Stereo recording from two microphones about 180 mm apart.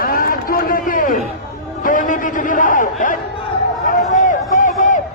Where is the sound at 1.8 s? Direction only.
45° left (ahead or behind).